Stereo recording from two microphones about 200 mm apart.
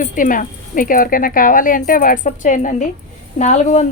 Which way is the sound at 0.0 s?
40° left (ahead or behind).